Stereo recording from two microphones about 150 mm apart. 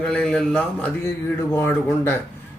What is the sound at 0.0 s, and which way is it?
A man's voice, 5° left (ahead or behind).